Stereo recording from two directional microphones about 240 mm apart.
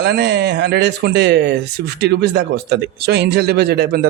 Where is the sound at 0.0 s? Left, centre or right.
Right.